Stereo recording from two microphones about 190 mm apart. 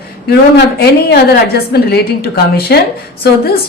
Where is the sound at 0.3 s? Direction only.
55° left (ahead or behind).